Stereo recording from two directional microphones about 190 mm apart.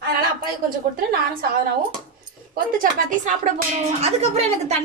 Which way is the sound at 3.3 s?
40° right (ahead or behind).